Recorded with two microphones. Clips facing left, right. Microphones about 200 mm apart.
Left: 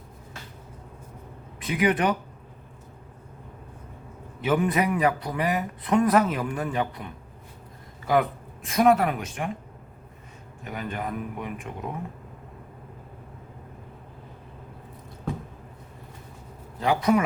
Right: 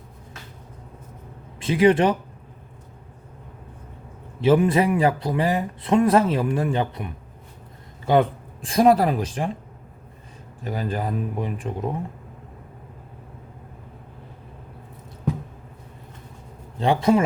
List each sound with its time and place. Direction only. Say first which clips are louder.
1.5 s speech: right 7 dB; 25° right (ahead or behind)
4.4 s speech: right 6 dB; 25° right (ahead or behind)
10.6 s speech: right 5 dB; 35° right (ahead or behind)
16.7 s speech: right 3 dB; 30° right (ahead or behind)